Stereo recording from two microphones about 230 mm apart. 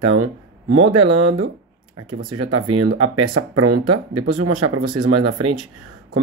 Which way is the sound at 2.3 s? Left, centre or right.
Right.